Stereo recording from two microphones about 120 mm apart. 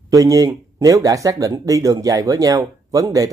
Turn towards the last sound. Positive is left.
turn(degrees=-30)  # may be behind; listen again after turning